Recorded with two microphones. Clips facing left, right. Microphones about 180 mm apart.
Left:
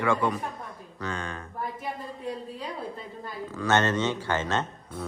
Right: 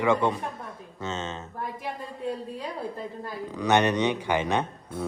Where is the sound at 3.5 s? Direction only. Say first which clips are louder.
Right 2 dB; 15° right (ahead or behind).